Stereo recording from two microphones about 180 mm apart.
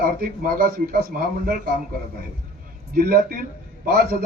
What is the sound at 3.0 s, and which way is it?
A man's voice, 55° right (ahead or behind).